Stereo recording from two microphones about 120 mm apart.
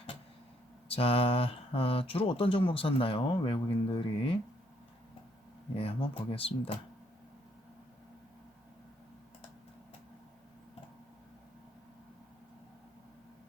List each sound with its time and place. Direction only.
0.9 s speech: 50° left (ahead or behind)
5.7 s speech: 50° left (ahead or behind)